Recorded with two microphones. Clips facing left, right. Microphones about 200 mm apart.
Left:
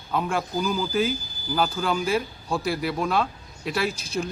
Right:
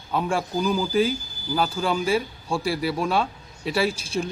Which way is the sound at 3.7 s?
30° right (ahead or behind).